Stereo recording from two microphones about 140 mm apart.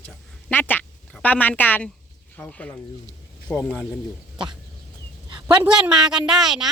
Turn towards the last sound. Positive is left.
turn(degrees=-5)  # may be behind; listen again after turning